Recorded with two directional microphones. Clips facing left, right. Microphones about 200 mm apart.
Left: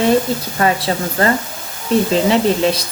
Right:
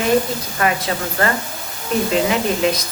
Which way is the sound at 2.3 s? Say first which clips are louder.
Left 4 dB; 30° left (ahead or behind).